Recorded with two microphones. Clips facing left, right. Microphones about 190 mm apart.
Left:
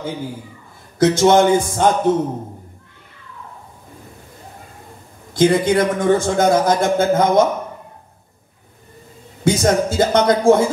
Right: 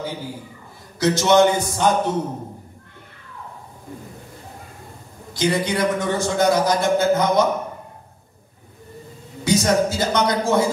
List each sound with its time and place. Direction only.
0.9 s a man's voice: 50° left (ahead or behind)
5.3 s a man's voice: 50° left (ahead or behind)
9.4 s a man's voice: 50° left (ahead or behind)